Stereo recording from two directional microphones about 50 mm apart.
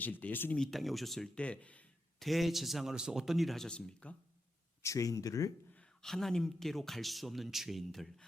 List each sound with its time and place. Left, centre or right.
0.0 s speech: left
0.7 s speech: centre
1.4 s speech: left
2.1 s speech: centre
3.7 s speech: centre
4.8 s speech: left
6.0 s speech: centre